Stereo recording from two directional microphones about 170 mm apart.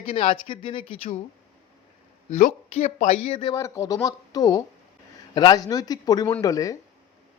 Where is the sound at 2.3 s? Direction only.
45° left (ahead or behind).